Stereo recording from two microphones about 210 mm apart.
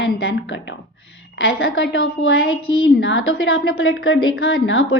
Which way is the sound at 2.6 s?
25° left (ahead or behind).